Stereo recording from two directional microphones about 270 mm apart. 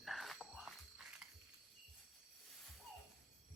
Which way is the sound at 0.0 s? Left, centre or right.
Centre.